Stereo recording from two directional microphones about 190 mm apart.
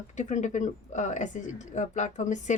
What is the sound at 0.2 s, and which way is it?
Speech, 40° left (ahead or behind).